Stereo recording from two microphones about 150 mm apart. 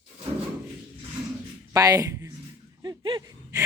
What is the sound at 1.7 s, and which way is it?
Speech, 25° right (ahead or behind).